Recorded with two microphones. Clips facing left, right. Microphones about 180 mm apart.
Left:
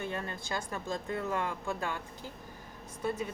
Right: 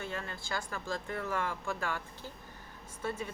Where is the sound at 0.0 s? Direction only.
20° left (ahead or behind).